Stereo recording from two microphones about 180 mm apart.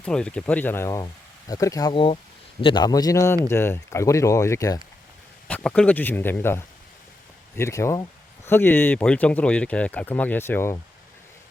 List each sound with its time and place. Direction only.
0.0 s speech: 5° left (ahead or behind)